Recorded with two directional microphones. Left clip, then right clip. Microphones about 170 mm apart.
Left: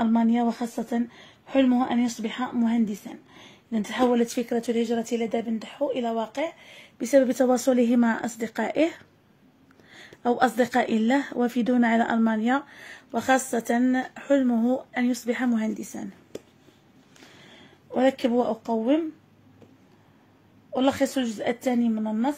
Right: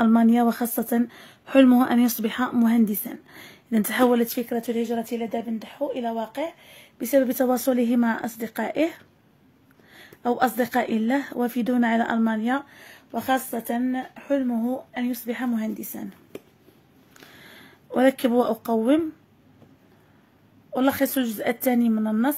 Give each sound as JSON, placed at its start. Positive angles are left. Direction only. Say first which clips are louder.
{"t": 0.0, "sound": "a woman's voice", "louder": "right 4 dB", "side_deg": -35}
{"t": 4.4, "sound": "a woman's voice", "louder": "left 1 dB", "side_deg": 0}
{"t": 15.8, "sound": "speech", "louder": "even", "side_deg": 0}
{"t": 17.4, "sound": "speech", "louder": "right 3 dB", "side_deg": -20}
{"t": 20.7, "sound": "a woman's voice", "louder": "right 1 dB", "side_deg": -20}